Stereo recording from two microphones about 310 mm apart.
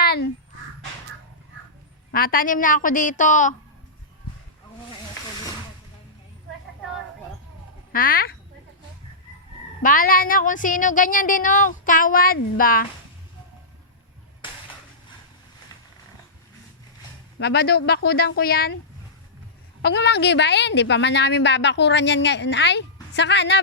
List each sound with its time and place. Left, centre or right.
0.0 s crow: left
2.1 s speech: left
7.9 s speech: left
9.8 s speech: left
17.4 s a woman's voice: left
19.8 s a woman's voice: left